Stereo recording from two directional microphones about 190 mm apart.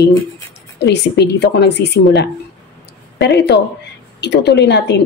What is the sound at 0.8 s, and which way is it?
Speech, 60° left (ahead or behind).